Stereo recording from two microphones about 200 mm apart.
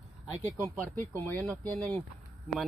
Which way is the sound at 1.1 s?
10° left (ahead or behind).